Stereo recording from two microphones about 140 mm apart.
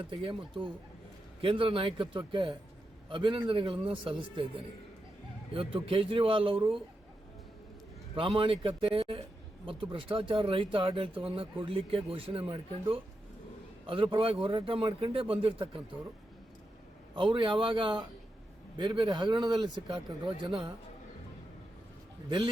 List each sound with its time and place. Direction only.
0.1 s speech: 35° right (ahead or behind)
8.1 s speech: 40° right (ahead or behind)
17.2 s speech: 35° right (ahead or behind)